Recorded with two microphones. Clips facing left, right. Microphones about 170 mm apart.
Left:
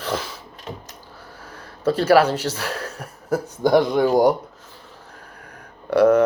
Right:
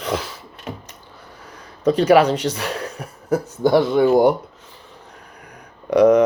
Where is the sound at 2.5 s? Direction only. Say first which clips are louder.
Right 2 dB; 10° right (ahead or behind).